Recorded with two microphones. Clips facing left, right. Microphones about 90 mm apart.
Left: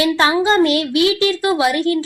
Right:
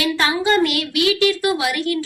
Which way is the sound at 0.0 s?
25° left (ahead or behind).